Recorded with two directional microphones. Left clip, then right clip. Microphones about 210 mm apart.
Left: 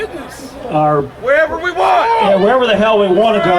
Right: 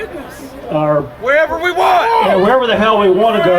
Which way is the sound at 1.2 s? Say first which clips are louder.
Right 1 dB; 30° right (ahead or behind).